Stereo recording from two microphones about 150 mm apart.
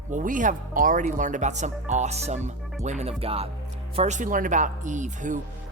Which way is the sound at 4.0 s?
55° right (ahead or behind).